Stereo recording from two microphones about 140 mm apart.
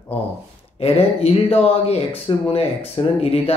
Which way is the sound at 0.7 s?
45° left (ahead or behind).